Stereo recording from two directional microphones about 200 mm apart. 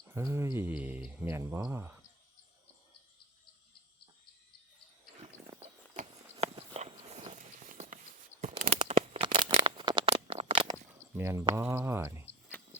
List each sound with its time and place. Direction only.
0.1 s speech: 15° right (ahead or behind)
6.4 s a sound: 30° right (ahead or behind)
11.1 s speech: 10° right (ahead or behind)